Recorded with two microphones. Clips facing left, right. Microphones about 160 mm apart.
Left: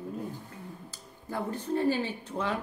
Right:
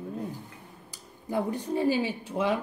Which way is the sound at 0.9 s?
15° right (ahead or behind).